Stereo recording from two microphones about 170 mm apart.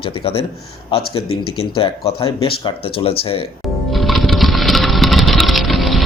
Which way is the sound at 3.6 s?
Centre (ahead or behind).